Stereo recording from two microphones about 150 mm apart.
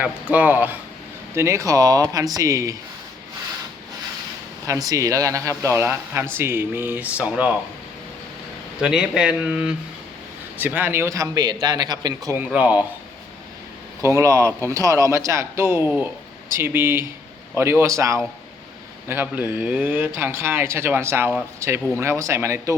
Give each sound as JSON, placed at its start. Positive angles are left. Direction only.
{"t": 0.0, "sound": "speech", "side_deg": -10}
{"t": 4.6, "sound": "speech", "side_deg": -20}
{"t": 8.8, "sound": "speech", "side_deg": -5}
{"t": 12.4, "sound": "speech", "side_deg": -10}
{"t": 14.0, "sound": "speech", "side_deg": -20}